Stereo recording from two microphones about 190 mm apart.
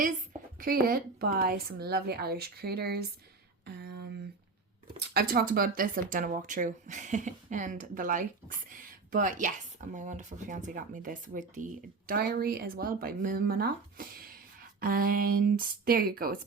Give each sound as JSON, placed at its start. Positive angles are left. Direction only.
{"t": 0.6, "sound": "a woman's voice", "side_deg": -50}
{"t": 3.7, "sound": "a sound", "side_deg": -60}
{"t": 4.9, "sound": "speech", "side_deg": -55}